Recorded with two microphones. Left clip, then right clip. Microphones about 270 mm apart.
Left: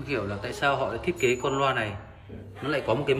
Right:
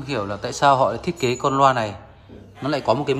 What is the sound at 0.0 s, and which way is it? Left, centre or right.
A man's voice, centre.